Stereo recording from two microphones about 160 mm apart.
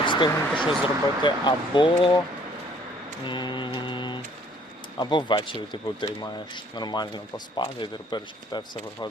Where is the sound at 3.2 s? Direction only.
30° left (ahead or behind).